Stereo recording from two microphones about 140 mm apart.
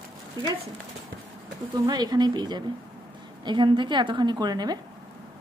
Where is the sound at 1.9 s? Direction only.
30° right (ahead or behind).